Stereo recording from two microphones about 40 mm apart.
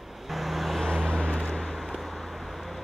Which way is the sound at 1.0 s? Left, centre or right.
Centre.